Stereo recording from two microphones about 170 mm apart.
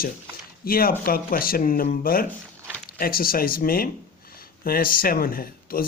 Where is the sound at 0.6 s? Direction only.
60° left (ahead or behind).